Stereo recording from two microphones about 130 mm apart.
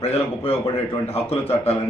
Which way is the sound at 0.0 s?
50° left (ahead or behind).